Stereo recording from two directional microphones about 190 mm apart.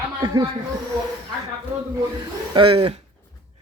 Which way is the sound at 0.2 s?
25° right (ahead or behind).